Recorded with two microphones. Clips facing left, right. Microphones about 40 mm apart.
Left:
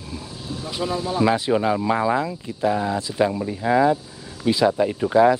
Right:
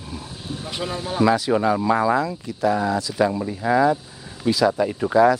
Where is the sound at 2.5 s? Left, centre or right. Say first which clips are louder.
Right 1 dB; left.